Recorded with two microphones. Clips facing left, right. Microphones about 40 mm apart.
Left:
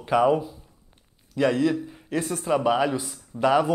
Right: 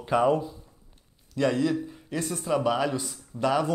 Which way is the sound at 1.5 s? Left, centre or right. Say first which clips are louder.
Left 3 dB; centre.